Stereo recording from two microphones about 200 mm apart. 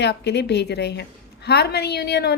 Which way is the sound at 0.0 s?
60° left (ahead or behind).